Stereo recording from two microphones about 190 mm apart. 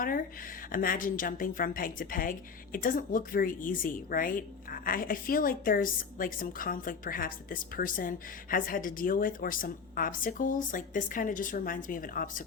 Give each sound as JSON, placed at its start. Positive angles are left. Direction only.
{"t": 0.0, "sound": "speech", "side_deg": 50}